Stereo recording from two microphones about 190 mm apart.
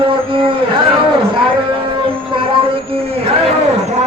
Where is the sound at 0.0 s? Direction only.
30° right (ahead or behind).